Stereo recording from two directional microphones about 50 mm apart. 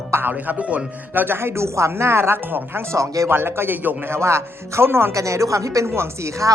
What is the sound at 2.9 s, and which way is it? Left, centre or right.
Speech, right.